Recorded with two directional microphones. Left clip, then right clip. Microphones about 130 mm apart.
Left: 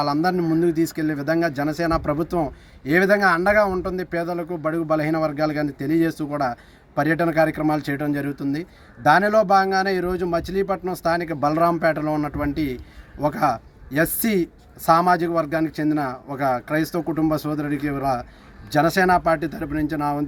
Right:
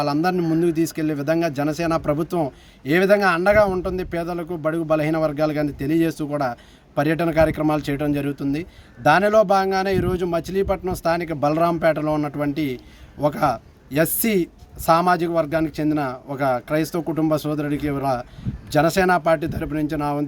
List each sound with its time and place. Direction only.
0.0 s speech: 15° right (ahead or behind)
12.5 s a man's voice: 45° right (ahead or behind)
13.1 s speech: 15° right (ahead or behind)